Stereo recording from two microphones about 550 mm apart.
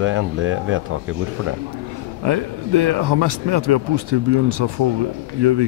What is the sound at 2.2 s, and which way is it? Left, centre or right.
Speech, right.